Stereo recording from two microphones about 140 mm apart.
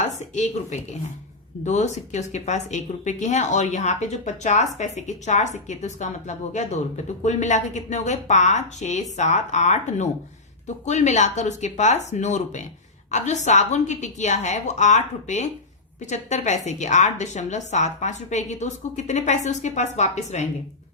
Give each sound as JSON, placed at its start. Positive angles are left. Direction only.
{"t": 0.0, "sound": "a woman's voice", "side_deg": 55}